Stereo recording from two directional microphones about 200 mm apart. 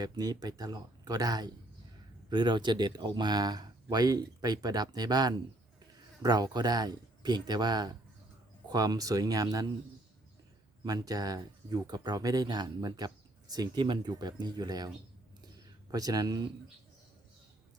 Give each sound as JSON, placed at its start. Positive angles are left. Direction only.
{"t": 0.0, "sound": "speech", "side_deg": -20}
{"t": 10.8, "sound": "speech", "side_deg": -20}
{"t": 15.4, "sound": "a sound", "side_deg": -20}